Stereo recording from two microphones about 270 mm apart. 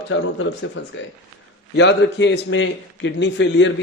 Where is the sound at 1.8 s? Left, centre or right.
Left.